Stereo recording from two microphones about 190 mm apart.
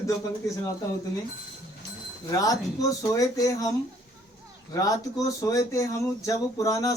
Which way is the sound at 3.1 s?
20° left (ahead or behind).